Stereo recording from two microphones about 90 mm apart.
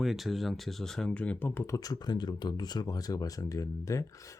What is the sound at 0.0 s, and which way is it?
Speech, 5° right (ahead or behind).